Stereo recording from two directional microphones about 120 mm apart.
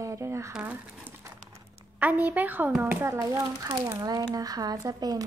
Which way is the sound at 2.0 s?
15° right (ahead or behind).